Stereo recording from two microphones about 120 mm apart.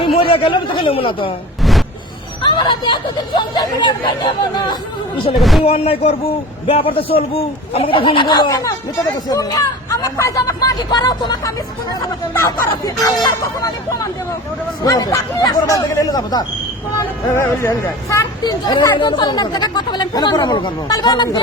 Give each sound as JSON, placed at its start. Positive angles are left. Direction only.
{"t": 0.0, "sound": "a man's voice", "side_deg": 50}
{"t": 2.4, "sound": "speech", "side_deg": 40}
{"t": 5.4, "sound": "speech", "side_deg": 0}
{"t": 5.6, "sound": "a man's voice", "side_deg": 55}
{"t": 12.3, "sound": "speech", "side_deg": 20}
{"t": 17.3, "sound": "speech", "side_deg": 20}
{"t": 18.4, "sound": "speech", "side_deg": 35}